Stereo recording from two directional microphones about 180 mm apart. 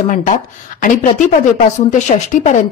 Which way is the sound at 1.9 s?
40° left (ahead or behind).